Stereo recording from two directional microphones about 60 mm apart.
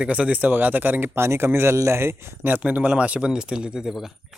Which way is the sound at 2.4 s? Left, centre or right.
Right.